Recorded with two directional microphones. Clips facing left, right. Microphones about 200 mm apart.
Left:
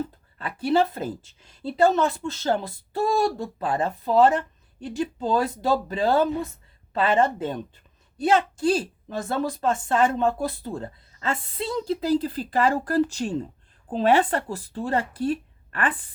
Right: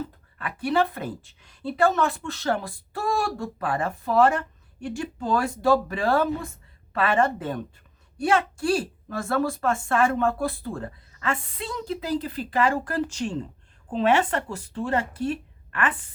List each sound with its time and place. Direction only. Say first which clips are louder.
0.3 s a woman's voice: left 2 dB; 30° left (ahead or behind)